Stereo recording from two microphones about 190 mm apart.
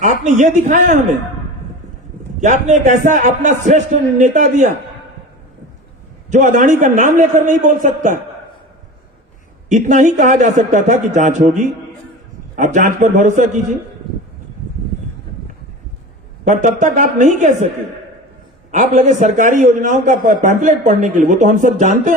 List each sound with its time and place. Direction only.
0.0 s a man's voice: 40° right (ahead or behind)
2.4 s a man's voice: 40° right (ahead or behind)
6.3 s a man's voice: 40° right (ahead or behind)
9.6 s a man's voice: 40° right (ahead or behind)
16.4 s a man's voice: 40° right (ahead or behind)
18.7 s a man's voice: 40° right (ahead or behind)